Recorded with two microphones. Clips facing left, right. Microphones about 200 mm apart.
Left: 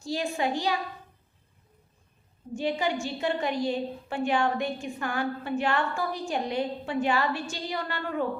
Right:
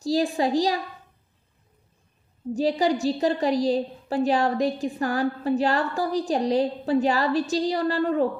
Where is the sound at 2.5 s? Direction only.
35° right (ahead or behind).